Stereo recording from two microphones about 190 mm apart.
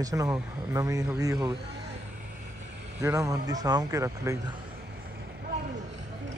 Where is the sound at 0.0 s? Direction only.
15° right (ahead or behind).